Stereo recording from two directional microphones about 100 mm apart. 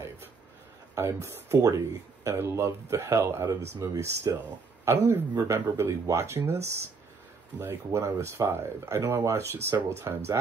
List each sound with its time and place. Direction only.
0.9 s speech: 25° right (ahead or behind)